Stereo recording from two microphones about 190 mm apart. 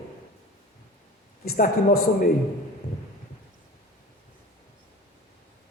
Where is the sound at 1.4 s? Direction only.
50° left (ahead or behind).